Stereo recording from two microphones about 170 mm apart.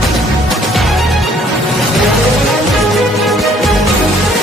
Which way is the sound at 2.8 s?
Centre (ahead or behind).